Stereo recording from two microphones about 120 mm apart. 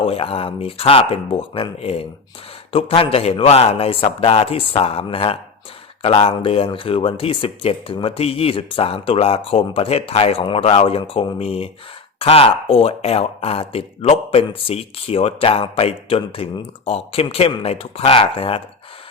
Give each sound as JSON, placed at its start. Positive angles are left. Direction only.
{"t": 0.0, "sound": "speech", "side_deg": 55}